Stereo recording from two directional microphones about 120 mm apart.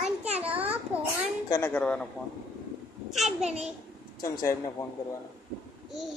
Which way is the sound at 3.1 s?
Centre (ahead or behind).